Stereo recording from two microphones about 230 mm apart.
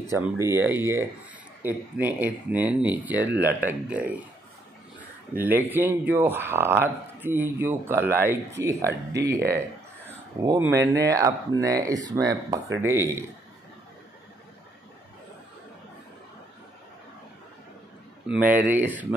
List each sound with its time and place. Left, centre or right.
0.4 s speech: centre
5.3 s speech: centre
18.2 s speech: centre